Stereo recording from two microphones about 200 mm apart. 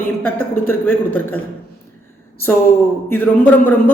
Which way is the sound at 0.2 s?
10° left (ahead or behind).